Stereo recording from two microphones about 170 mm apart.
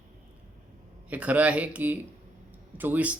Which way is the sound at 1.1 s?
10° right (ahead or behind).